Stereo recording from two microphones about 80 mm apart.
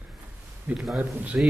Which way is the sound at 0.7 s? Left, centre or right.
Centre.